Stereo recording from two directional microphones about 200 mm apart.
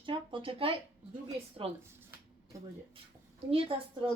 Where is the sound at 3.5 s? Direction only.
25° right (ahead or behind).